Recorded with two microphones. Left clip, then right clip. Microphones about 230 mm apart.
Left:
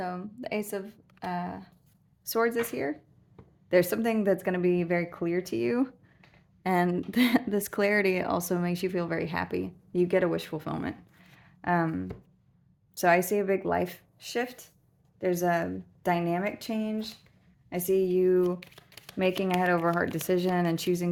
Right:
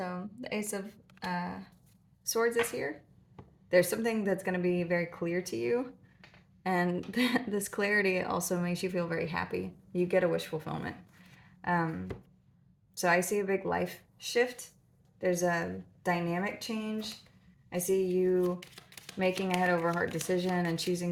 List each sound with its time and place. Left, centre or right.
0.0 s a woman's voice: left
13.0 s speech: left